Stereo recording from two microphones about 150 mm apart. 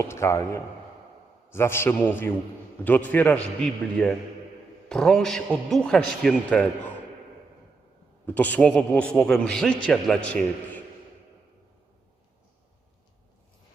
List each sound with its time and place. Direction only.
0.0 s a man's voice: 20° left (ahead or behind)
8.3 s a man's voice: 10° left (ahead or behind)